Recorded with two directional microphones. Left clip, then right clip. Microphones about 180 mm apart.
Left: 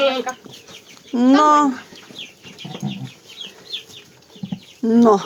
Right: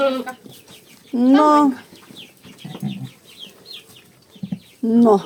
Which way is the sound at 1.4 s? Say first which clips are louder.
Even; 10° right (ahead or behind).